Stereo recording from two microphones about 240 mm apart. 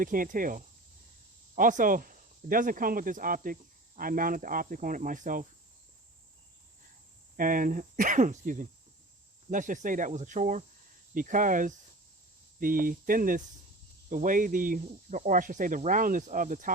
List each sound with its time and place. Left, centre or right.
0.0 s speech: right
7.3 s speech: right